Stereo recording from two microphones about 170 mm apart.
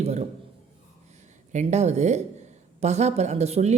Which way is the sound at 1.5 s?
40° right (ahead or behind).